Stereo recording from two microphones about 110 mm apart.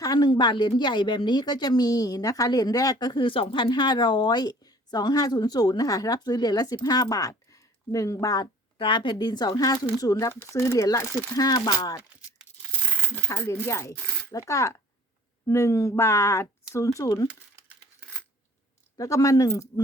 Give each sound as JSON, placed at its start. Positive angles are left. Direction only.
{"t": 0.0, "sound": "a woman's voice", "side_deg": 35}
{"t": 8.8, "sound": "a woman's voice", "side_deg": 45}
{"t": 11.1, "sound": "speech", "side_deg": 15}
{"t": 11.3, "sound": "a woman's voice", "side_deg": 35}
{"t": 13.1, "sound": "a woman's voice", "side_deg": 15}
{"t": 18.9, "sound": "speech", "side_deg": 30}